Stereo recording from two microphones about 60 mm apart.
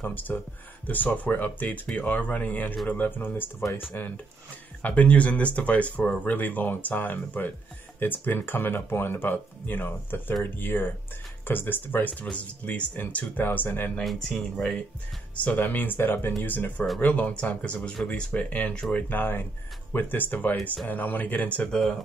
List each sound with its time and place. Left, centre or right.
0.0 s speech: left
14.0 s speech: centre
15.3 s speech: left
18.8 s speech: centre
19.0 s speech: left